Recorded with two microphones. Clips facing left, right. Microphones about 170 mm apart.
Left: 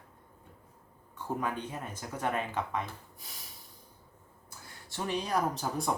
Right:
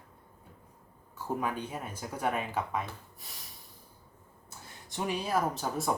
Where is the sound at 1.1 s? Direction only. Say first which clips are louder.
Right 1 dB; 10° right (ahead or behind).